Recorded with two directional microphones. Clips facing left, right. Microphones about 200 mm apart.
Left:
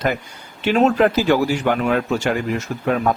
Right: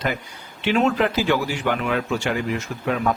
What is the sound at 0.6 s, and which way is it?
A man's voice, 40° left (ahead or behind).